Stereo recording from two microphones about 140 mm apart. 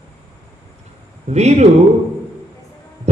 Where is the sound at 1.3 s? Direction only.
55° right (ahead or behind).